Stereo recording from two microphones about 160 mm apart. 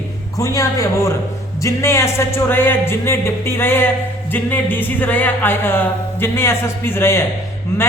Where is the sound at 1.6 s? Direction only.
20° left (ahead or behind).